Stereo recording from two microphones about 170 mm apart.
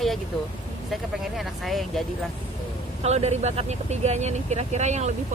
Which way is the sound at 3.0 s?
40° right (ahead or behind).